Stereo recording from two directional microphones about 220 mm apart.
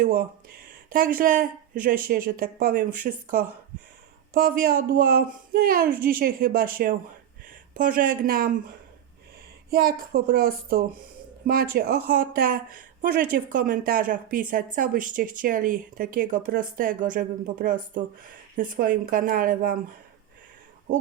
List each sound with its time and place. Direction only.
0.0 s speech: 40° right (ahead or behind)
9.6 s speech: 45° right (ahead or behind)